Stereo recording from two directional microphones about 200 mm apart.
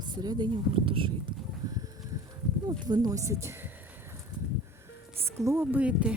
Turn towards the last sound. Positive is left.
turn(degrees=-5)  # may be behind; listen again after turning